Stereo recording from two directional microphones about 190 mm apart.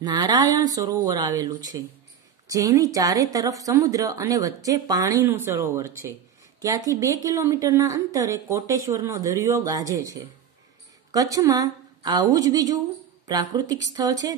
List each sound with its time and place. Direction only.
0.0 s a woman's voice: 20° right (ahead or behind)